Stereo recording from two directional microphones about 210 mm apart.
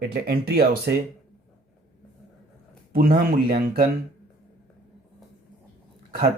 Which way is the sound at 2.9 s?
45° right (ahead or behind).